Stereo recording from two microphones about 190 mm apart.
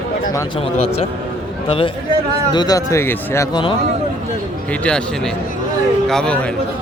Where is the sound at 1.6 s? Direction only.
30° left (ahead or behind).